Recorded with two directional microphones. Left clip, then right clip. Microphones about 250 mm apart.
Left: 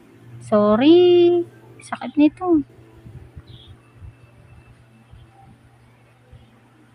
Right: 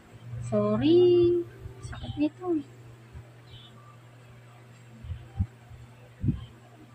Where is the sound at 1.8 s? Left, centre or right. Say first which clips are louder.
Left 13 dB; left.